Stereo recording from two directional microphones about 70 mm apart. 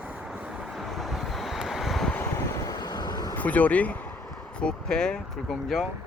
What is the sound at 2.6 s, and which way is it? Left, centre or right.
Vehicle, left.